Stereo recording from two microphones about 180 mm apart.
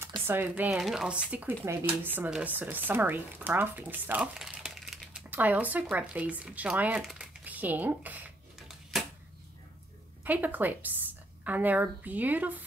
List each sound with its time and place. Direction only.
0.3 s speech: 10° right (ahead or behind)
0.7 s speech: centre (ahead or behind)
10.2 s speech: 10° right (ahead or behind)